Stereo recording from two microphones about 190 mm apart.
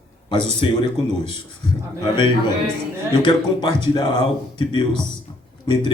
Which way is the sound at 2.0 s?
25° left (ahead or behind).